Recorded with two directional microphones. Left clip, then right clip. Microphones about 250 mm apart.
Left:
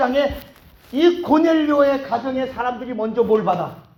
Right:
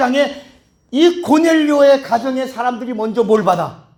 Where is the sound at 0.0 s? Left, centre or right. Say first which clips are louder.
Right 3 dB; right.